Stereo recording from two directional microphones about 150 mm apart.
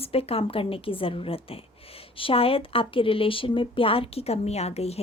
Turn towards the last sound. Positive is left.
turn(degrees=45)  # may be behind; listen again after turning